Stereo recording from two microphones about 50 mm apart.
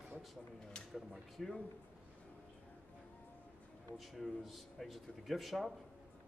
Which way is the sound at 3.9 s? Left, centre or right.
Centre.